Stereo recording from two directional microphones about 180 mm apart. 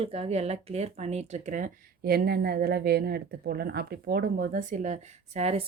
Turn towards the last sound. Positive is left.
turn(degrees=-35)  # may be behind; listen again after turning